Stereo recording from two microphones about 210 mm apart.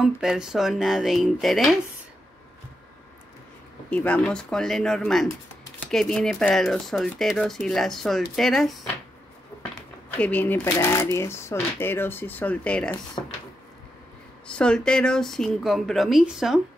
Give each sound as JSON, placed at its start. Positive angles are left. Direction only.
{"t": 0.0, "sound": "speech", "side_deg": -5}
{"t": 3.9, "sound": "speech", "side_deg": 5}
{"t": 10.1, "sound": "speech", "side_deg": 10}
{"t": 13.2, "sound": "speech", "side_deg": 20}
{"t": 14.6, "sound": "speech", "side_deg": 5}